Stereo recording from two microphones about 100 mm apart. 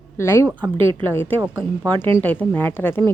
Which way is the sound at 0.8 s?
60° right (ahead or behind).